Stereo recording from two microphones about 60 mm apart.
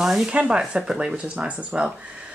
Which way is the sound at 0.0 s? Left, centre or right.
Centre.